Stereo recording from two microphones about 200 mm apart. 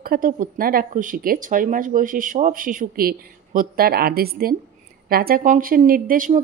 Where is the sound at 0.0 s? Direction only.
45° right (ahead or behind).